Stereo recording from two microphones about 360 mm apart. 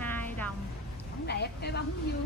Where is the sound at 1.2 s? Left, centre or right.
Left.